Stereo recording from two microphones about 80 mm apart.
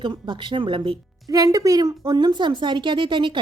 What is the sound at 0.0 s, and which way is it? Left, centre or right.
Speech, right.